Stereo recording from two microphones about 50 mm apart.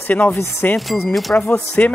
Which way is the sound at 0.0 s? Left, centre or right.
Left.